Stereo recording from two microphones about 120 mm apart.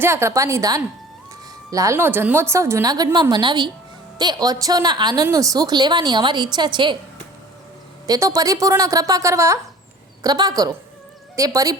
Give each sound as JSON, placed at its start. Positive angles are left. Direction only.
{"t": 0.0, "sound": "a woman's voice", "side_deg": -20}
{"t": 8.0, "sound": "a woman's voice", "side_deg": -30}